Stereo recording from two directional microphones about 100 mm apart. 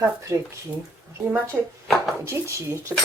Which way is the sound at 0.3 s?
25° right (ahead or behind).